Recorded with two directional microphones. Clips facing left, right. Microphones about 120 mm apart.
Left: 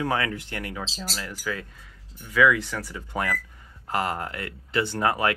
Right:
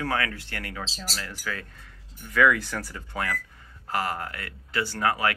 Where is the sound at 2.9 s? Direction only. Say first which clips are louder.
Left 5 dB; 20° left (ahead or behind).